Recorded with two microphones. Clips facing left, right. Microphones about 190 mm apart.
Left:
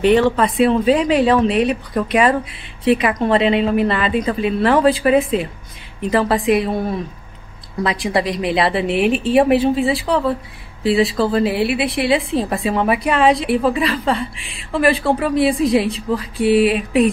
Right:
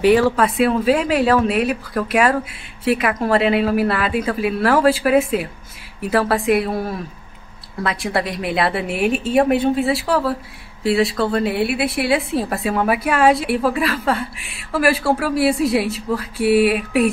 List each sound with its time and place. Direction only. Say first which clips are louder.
0.0 s a woman's voice: even; 10° right (ahead or behind)